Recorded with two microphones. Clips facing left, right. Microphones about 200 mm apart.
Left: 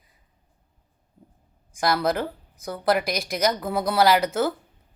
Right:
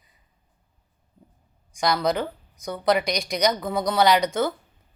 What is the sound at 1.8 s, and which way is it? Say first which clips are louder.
A woman's voice: even; 5° left (ahead or behind).